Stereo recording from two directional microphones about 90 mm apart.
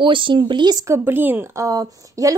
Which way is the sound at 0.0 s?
65° right (ahead or behind).